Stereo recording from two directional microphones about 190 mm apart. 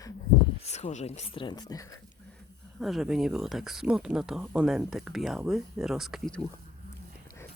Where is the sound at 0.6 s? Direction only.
35° left (ahead or behind); by 1.8 s 20° left (ahead or behind).